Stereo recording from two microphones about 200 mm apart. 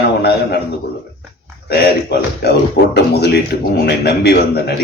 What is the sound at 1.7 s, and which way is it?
Speech, 50° left (ahead or behind).